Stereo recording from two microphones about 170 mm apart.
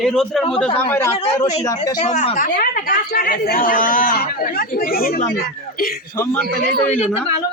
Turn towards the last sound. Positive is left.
turn(degrees=5)  # may be behind; listen again after turning